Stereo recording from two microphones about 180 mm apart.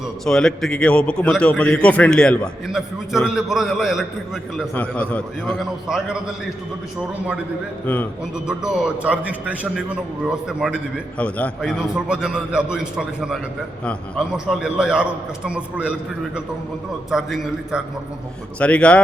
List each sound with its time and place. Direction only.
0.3 s a man's voice: 5° left (ahead or behind)
8.4 s a man's voice: 5° right (ahead or behind)
11.2 s a man's voice: 5° left (ahead or behind)
11.9 s a man's voice: 5° right (ahead or behind)
18.6 s a man's voice: 5° left (ahead or behind)